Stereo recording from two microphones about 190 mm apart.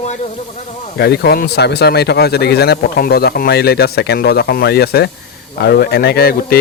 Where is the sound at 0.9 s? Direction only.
60° left (ahead or behind).